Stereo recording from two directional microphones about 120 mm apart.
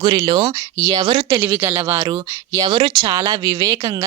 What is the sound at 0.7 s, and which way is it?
Speech, 25° right (ahead or behind).